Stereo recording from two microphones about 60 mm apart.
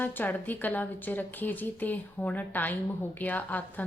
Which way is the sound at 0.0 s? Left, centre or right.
Left.